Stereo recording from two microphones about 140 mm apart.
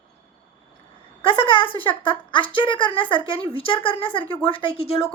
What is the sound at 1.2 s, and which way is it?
A woman's voice, 40° left (ahead or behind).